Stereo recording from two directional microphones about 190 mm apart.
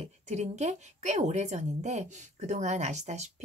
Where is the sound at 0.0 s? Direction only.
35° right (ahead or behind).